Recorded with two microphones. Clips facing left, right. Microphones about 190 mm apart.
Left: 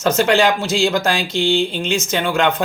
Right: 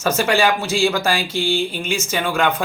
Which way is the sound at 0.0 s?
10° right (ahead or behind).